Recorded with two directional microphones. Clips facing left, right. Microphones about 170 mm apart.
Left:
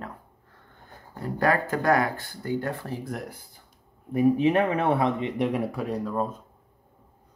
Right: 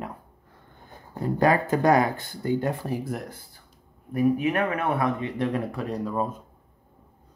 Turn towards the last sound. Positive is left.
turn(degrees=-5)  # may be behind; listen again after turning